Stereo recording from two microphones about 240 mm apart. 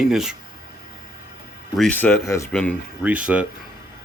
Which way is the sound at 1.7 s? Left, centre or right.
Centre.